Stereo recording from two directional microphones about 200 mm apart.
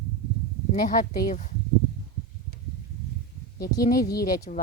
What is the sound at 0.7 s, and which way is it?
Speech, 40° left (ahead or behind).